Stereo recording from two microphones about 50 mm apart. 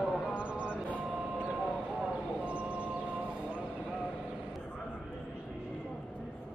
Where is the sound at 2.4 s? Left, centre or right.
Right.